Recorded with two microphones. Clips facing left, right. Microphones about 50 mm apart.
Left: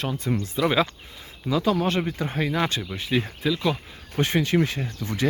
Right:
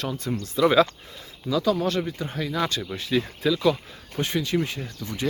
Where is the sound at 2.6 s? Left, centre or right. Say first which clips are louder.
Right 3 dB; left.